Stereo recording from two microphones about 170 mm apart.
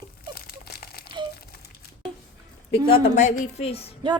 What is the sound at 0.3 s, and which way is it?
Crumpling, 65° left (ahead or behind).